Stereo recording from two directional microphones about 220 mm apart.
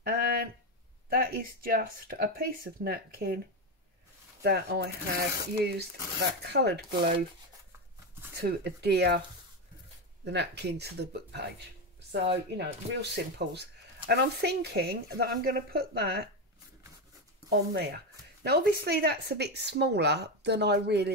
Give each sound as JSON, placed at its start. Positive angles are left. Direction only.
{"t": 0.0, "sound": "a sound", "side_deg": -40}
{"t": 1.1, "sound": "speech", "side_deg": -40}
{"t": 4.4, "sound": "speech", "side_deg": -45}
{"t": 8.4, "sound": "speech", "side_deg": -45}
{"t": 10.2, "sound": "speech", "side_deg": -50}
{"t": 17.5, "sound": "speech", "side_deg": -50}